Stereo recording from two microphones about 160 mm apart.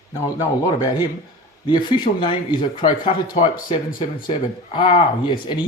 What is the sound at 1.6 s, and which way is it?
A man's voice, 30° left (ahead or behind).